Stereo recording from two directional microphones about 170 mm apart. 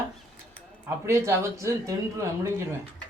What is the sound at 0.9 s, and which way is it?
A man's voice, 15° right (ahead or behind).